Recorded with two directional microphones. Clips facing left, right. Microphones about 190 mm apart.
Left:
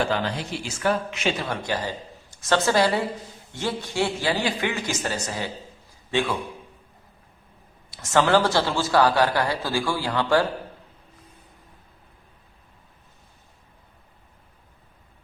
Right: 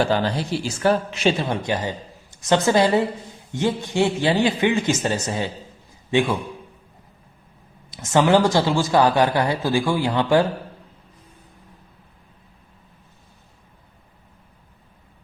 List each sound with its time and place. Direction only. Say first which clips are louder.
0.0 s a man's voice: right 4 dB; 35° right (ahead or behind); by 6.3 s 15° right (ahead or behind)
7.9 s a man's voice: right 3 dB; 20° right (ahead or behind)